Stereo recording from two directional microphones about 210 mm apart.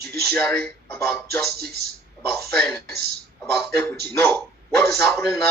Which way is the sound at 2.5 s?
5° left (ahead or behind).